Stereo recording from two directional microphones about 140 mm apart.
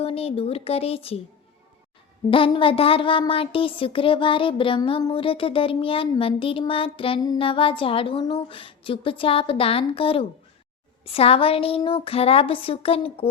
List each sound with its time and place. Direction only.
0.0 s a woman's voice: 45° left (ahead or behind)
2.3 s a woman's voice: 40° left (ahead or behind)